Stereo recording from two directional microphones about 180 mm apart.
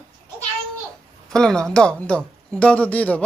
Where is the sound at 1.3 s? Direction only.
5° left (ahead or behind).